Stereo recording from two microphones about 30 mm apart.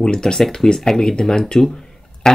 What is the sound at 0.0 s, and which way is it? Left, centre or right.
Speech, left.